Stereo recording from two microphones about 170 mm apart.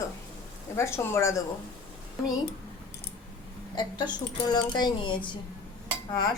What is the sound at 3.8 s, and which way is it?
Speech, 25° left (ahead or behind).